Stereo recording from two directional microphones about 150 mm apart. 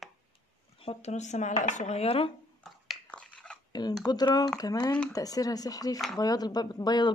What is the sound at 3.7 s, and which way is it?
Speech, 30° left (ahead or behind).